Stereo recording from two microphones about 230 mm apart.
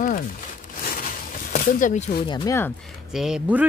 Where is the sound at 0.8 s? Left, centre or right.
Left.